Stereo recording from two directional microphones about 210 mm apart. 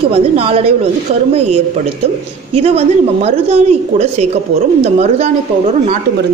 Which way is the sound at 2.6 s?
30° right (ahead or behind).